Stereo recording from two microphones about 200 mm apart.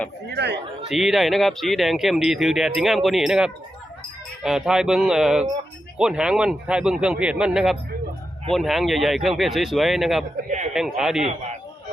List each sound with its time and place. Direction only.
0.3 s speech: 55° right (ahead or behind)
0.9 s speech: centre (ahead or behind)